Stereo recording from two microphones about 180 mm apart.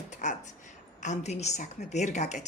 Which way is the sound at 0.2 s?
40° left (ahead or behind).